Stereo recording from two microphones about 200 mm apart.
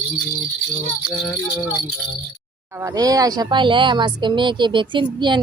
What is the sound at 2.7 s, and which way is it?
Speech, 15° right (ahead or behind).